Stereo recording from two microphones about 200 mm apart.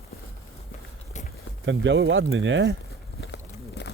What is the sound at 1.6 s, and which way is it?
Speech, 65° right (ahead or behind).